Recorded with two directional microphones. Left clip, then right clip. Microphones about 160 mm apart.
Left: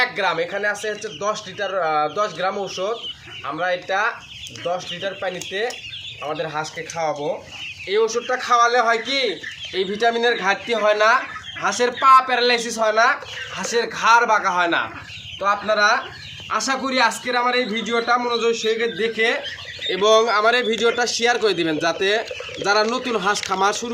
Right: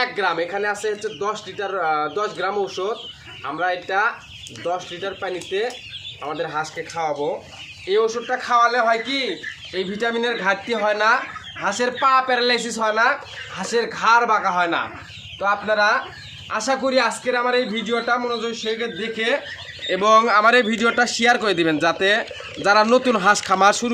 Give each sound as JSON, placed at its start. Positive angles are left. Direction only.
{"t": 0.0, "sound": "a man's voice", "side_deg": -20}
{"t": 19.9, "sound": "a man's voice", "side_deg": -55}